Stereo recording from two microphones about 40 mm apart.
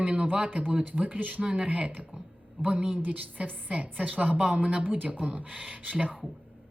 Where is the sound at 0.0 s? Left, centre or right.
Right.